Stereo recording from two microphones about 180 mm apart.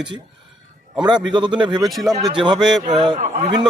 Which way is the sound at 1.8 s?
Centre (ahead or behind).